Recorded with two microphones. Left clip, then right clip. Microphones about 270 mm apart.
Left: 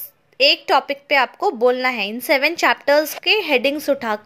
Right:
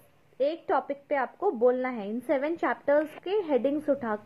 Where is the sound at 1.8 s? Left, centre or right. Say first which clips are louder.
Left 11 dB; left.